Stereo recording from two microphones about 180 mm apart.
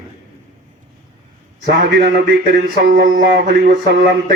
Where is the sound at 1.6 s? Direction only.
65° right (ahead or behind).